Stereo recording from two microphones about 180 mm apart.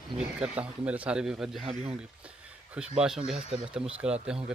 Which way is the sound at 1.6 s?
35° right (ahead or behind).